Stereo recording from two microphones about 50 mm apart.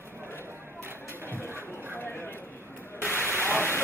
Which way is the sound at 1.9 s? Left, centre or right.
Left.